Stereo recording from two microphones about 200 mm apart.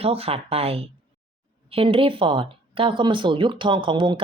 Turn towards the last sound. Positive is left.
turn(degrees=-25)  # may be behind; listen again after turning